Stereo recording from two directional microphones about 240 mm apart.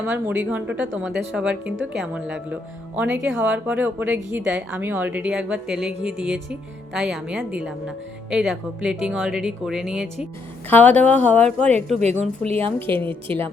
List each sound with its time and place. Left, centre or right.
0.1 s a woman's voice: centre
12.5 s a woman's voice: right
12.8 s a woman's voice: centre